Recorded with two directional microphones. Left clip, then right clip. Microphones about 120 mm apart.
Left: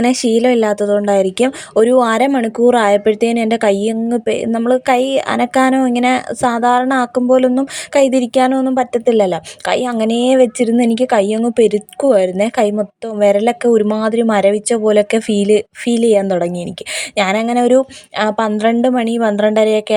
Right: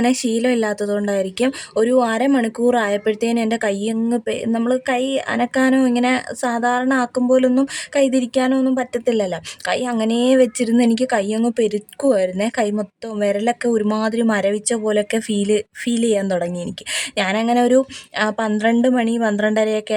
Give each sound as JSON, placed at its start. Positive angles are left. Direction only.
{"t": 0.0, "sound": "a woman's voice", "side_deg": 35}